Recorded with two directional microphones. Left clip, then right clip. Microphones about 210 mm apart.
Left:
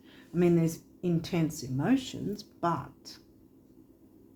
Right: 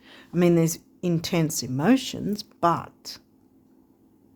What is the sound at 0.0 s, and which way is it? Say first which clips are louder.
Speech: right 5 dB; 55° right (ahead or behind).